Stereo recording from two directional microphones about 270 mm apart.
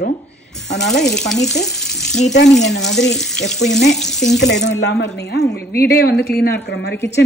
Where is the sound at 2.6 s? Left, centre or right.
Left.